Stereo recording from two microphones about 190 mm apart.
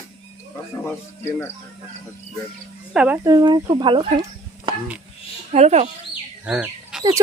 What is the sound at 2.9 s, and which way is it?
Speech, 5° right (ahead or behind).